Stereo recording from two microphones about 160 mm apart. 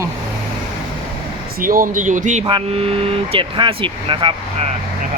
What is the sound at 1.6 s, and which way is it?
Speech, 60° right (ahead or behind).